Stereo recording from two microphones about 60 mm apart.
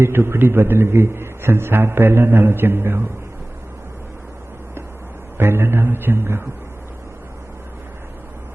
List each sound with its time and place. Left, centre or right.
0.0 s a man's voice: right
5.4 s speech: right